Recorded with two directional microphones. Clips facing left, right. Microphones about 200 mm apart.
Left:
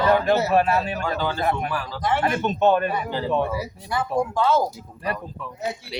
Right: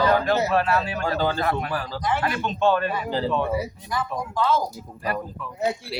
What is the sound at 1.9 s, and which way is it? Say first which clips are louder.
Speech: left 2 dB; 50° left (ahead or behind).